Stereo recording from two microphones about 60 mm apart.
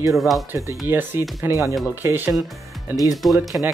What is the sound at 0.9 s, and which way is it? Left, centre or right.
Speech, right.